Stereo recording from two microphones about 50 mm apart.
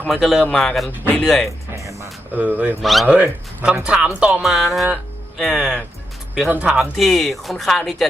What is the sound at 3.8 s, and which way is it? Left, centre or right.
Speech, right.